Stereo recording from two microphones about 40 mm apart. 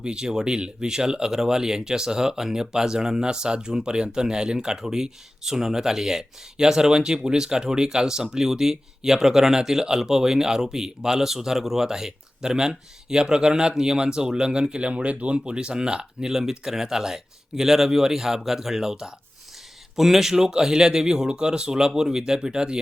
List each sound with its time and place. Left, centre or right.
0.0 s speech: right
15.4 s speech: right